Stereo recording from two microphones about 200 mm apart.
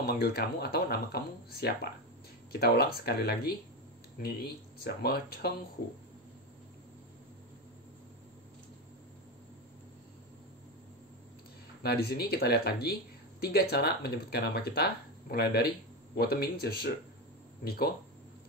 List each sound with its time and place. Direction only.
0.0 s speech: 50° left (ahead or behind)
11.8 s speech: 50° left (ahead or behind)